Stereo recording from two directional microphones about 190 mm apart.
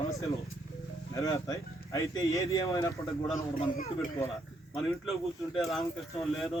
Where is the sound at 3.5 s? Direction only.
40° left (ahead or behind).